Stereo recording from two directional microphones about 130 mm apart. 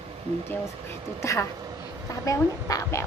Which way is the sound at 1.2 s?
20° left (ahead or behind).